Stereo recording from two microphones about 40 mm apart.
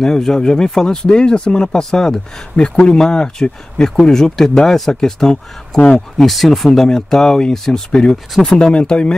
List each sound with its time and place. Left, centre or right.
0.0 s speech: centre
2.5 s speech: left; by 7.8 s centre
7.9 s speech: left